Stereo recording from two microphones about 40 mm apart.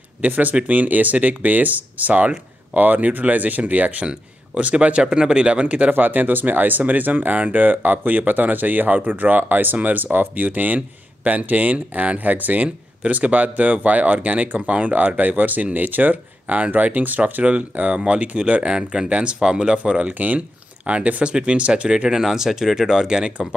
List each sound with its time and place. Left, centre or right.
0.2 s a man's voice: right
5.0 s speech: centre; by 5.9 s right
5.9 s speech: right
17.2 s speech: right
18.8 s speech: centre
21.8 s speech: centre